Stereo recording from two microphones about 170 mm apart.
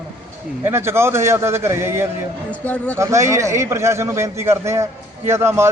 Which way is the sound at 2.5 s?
10° left (ahead or behind).